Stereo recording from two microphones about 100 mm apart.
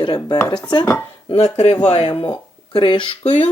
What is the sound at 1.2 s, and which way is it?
Speech, 75° left (ahead or behind).